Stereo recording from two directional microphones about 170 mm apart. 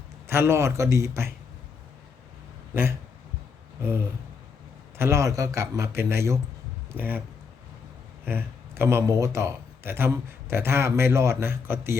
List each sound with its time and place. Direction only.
0.3 s speech: 15° right (ahead or behind)
4.9 s speech: 15° right (ahead or behind)
8.2 s speech: 10° right (ahead or behind)